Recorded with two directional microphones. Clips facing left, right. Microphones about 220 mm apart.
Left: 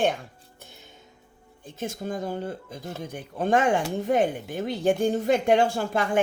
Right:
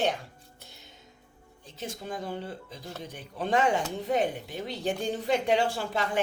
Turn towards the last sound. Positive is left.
turn(degrees=50)  # may be behind; listen again after turning